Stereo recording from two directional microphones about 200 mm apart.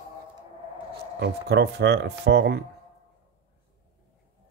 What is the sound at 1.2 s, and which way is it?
Speech, 55° right (ahead or behind).